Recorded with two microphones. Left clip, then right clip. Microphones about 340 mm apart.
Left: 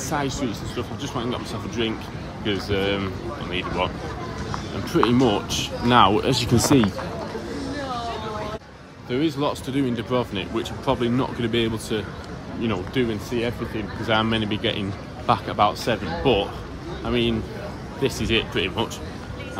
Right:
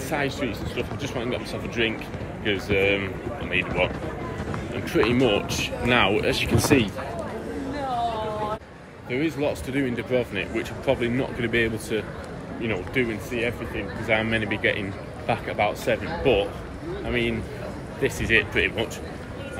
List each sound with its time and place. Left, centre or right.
0.1 s speech: left
2.7 s speech: left
5.0 s speech: left
9.1 s speech: centre